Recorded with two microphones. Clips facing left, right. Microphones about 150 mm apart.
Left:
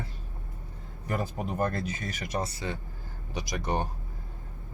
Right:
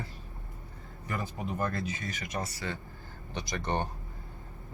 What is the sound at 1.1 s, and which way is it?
Speech, 50° left (ahead or behind).